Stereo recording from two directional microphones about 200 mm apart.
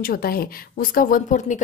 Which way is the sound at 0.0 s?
45° left (ahead or behind).